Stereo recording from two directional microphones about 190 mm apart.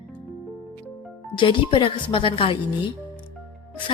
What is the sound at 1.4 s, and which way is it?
A woman's voice, 25° left (ahead or behind).